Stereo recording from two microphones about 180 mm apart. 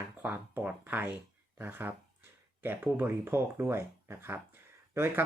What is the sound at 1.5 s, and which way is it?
Speech, 10° right (ahead or behind).